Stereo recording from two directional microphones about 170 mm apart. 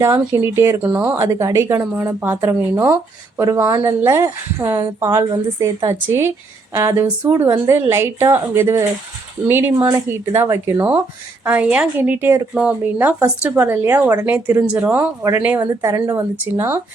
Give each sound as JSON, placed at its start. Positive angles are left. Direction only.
{"t": 0.0, "sound": "a woman's voice", "side_deg": -15}